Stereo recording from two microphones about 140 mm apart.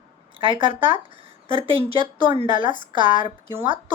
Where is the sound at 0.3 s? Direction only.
40° right (ahead or behind).